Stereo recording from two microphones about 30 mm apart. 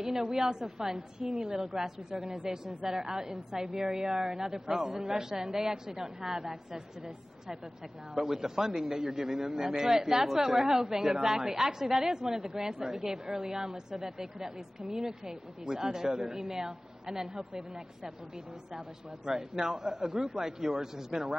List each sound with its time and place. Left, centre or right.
0.0 s a woman's voice: centre
4.6 s a man's voice: right
4.9 s a woman's voice: centre
8.2 s a woman's voice: centre
19.2 s a woman's voice: centre